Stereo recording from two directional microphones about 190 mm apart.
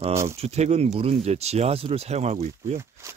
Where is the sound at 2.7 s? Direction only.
15° right (ahead or behind).